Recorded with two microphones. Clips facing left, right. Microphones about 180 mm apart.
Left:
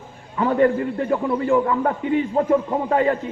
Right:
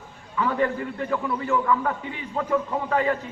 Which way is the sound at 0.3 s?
40° left (ahead or behind).